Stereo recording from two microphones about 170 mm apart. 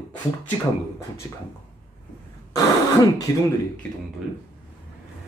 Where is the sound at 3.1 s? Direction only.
20° left (ahead or behind).